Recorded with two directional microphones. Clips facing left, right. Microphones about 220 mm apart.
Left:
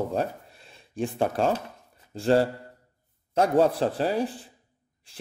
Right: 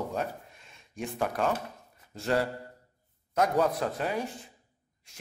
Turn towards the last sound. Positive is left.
turn(degrees=30)  # may be behind; listen again after turning